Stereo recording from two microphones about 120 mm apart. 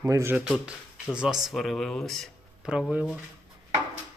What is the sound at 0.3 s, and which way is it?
Speech, 5° right (ahead or behind).